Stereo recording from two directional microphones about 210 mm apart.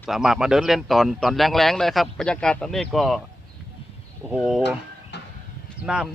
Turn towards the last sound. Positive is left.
turn(degrees=-5)  # may be behind; listen again after turning